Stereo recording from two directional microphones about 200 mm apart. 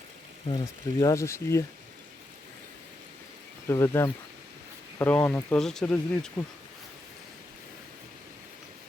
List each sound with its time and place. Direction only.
0.4 s speech: 25° left (ahead or behind)
3.7 s speech: 10° left (ahead or behind)